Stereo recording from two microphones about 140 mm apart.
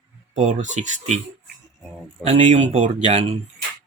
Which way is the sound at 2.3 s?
55° right (ahead or behind).